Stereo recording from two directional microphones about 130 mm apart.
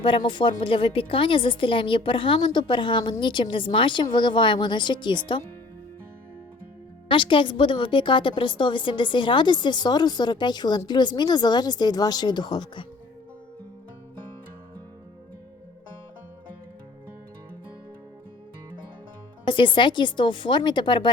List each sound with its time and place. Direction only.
0.0 s a woman's voice: 40° left (ahead or behind)
7.1 s a woman's voice: 40° left (ahead or behind)
19.5 s a woman's voice: 40° left (ahead or behind)